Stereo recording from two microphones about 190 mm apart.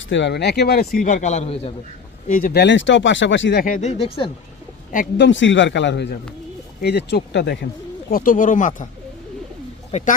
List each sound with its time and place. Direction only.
0.0 s speech: 70° left (ahead or behind); by 1.7 s 35° left (ahead or behind)
2.2 s speech: 45° left (ahead or behind); by 3.6 s 70° left (ahead or behind)
3.6 s speech: 40° left (ahead or behind)
5.1 s speech: 70° left (ahead or behind)
8.1 s speech: 45° left (ahead or behind)
9.9 s speech: 35° left (ahead or behind)